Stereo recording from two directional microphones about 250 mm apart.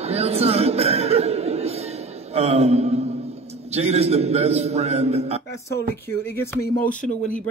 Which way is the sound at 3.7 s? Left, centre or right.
Right.